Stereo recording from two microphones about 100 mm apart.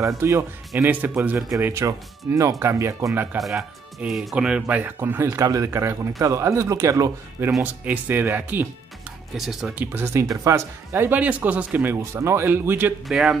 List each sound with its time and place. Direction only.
0.2 s speech: 25° right (ahead or behind)
1.6 s speech: 30° right (ahead or behind)
3.3 s speech: centre (ahead or behind); by 7.5 s 30° right (ahead or behind)
7.6 s speech: 15° right (ahead or behind)
9.4 s speech: 5° right (ahead or behind)
9.8 s speech: 25° right (ahead or behind)
13.1 s speech: 5° right (ahead or behind)